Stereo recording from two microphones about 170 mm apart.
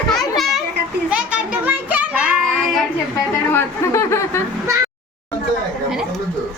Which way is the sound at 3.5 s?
15° left (ahead or behind).